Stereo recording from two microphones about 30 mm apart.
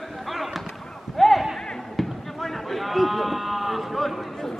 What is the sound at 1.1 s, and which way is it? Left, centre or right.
Horse, centre.